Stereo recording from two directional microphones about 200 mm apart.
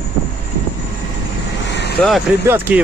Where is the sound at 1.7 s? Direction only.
55° left (ahead or behind).